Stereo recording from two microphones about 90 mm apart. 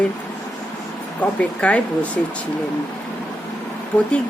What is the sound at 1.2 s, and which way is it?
Speech, 15° left (ahead or behind).